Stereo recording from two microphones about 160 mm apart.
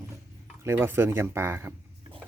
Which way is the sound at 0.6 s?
15° right (ahead or behind).